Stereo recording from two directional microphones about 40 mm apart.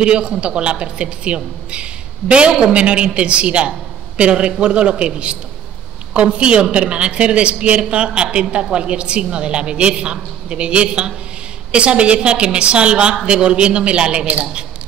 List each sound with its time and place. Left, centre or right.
0.0 s a woman's voice: right